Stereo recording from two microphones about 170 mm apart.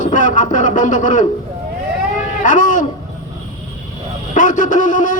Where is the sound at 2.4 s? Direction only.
50° left (ahead or behind).